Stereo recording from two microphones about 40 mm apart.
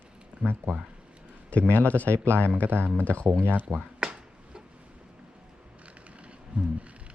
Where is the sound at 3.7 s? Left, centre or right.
Right.